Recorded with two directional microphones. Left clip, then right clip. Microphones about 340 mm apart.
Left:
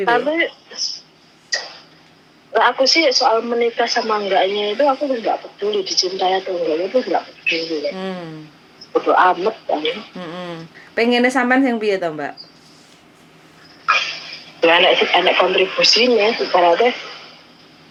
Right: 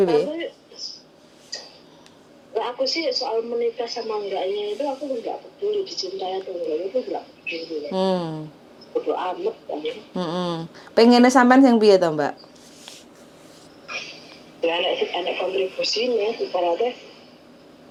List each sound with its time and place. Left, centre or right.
0.3 s speech: left
1.5 s tick-tock: left
2.5 s a woman's voice: left
9.0 s a woman's voice: left
10.2 s speech: centre
10.9 s a woman's voice: centre
13.8 s speech: left